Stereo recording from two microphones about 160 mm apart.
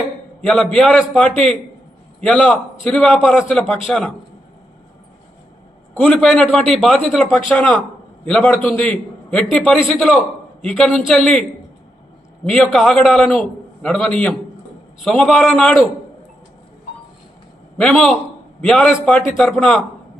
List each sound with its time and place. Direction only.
0.4 s a man's voice: centre (ahead or behind)
5.9 s a man's voice: 5° left (ahead or behind)
12.5 s a man's voice: centre (ahead or behind)
17.7 s a man's voice: 5° left (ahead or behind)